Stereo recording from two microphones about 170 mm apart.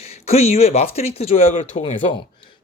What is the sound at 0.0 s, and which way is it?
Speech, 40° left (ahead or behind).